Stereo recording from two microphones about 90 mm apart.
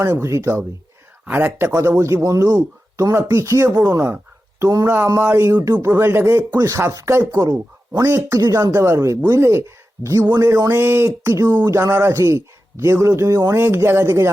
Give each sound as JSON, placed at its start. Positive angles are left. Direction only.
{"t": 0.0, "sound": "speech", "side_deg": -35}
{"t": 1.2, "sound": "speech", "side_deg": -20}
{"t": 5.5, "sound": "speech", "side_deg": -40}